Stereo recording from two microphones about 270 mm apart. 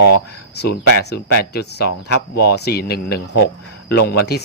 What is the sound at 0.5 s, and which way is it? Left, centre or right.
Speech, left.